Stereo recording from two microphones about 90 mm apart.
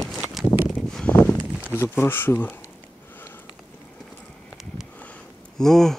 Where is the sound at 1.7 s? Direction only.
25° left (ahead or behind).